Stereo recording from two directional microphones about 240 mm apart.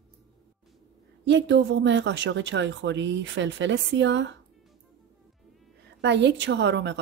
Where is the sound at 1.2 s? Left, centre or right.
Right.